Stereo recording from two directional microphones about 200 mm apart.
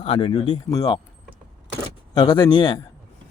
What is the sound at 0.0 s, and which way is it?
Speech, 25° left (ahead or behind).